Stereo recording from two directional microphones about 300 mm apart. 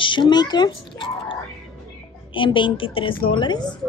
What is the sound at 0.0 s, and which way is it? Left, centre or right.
Speech, centre.